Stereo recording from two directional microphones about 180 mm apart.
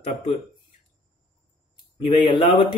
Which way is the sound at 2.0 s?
25° left (ahead or behind).